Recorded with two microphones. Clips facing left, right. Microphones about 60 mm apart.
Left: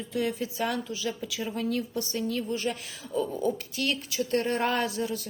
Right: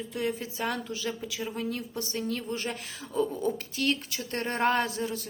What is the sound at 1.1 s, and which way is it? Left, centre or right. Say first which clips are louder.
Speech: left 1 dB; right.